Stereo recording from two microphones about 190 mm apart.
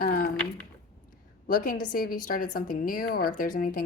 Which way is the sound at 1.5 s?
45° left (ahead or behind).